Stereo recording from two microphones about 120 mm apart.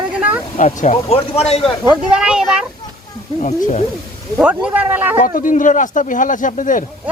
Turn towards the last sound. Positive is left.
turn(degrees=90)